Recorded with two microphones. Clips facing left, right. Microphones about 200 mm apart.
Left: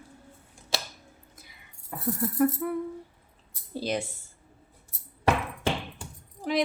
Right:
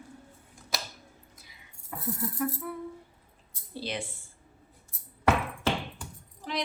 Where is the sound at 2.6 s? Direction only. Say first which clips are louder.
Left 8 dB; 60° left (ahead or behind).